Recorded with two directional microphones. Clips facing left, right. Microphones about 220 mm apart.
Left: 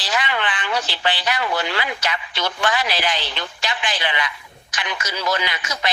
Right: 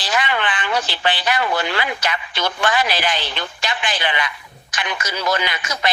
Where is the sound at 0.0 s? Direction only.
55° right (ahead or behind).